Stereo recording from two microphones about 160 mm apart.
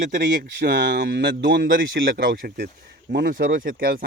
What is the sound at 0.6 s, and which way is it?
Speech, 90° right.